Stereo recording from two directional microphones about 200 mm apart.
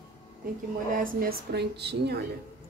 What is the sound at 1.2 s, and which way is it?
A woman's voice, 55° right (ahead or behind).